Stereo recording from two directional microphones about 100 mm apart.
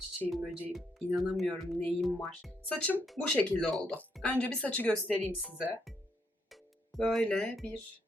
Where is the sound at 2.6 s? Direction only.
15° left (ahead or behind).